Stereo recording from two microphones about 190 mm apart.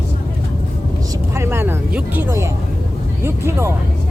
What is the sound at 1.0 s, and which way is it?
Speech, 15° right (ahead or behind).